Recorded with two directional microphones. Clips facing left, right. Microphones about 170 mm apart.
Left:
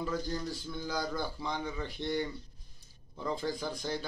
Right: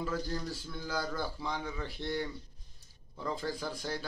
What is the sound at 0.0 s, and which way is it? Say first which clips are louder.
Speech: left 1 dB; 5° right (ahead or behind).